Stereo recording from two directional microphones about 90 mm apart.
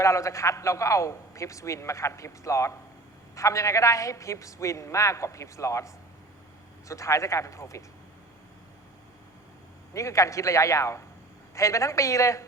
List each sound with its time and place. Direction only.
0.0 s a man's voice: 35° left (ahead or behind)
9.9 s a man's voice: 35° left (ahead or behind)